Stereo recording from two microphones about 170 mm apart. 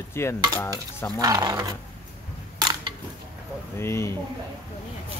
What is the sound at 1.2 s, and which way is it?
Stir, 20° right (ahead or behind).